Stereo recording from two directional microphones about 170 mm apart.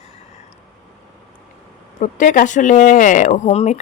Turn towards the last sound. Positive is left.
turn(degrees=40)  # may be behind; listen again after turning